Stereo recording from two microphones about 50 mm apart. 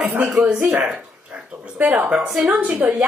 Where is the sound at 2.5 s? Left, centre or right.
Right.